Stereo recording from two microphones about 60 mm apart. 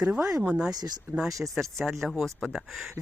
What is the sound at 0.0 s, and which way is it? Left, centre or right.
Speech, centre.